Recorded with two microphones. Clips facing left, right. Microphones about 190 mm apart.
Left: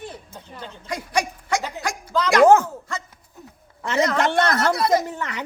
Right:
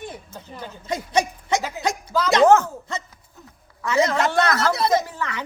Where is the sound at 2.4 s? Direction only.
15° left (ahead or behind).